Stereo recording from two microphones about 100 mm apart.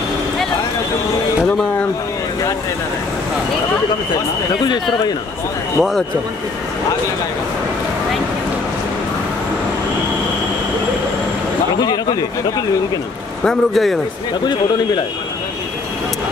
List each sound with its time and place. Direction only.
5.8 s a man's voice: centre (ahead or behind)
11.8 s speech: 40° left (ahead or behind)
13.4 s a man's voice: 5° left (ahead or behind)
14.4 s speech: 45° left (ahead or behind)